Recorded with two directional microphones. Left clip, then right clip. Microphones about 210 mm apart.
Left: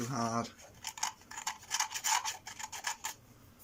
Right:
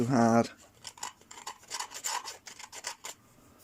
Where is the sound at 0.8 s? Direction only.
5° right (ahead or behind).